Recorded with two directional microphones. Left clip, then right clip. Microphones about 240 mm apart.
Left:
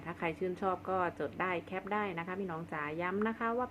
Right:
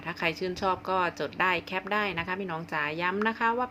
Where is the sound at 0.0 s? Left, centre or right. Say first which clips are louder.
Right 7 dB; centre.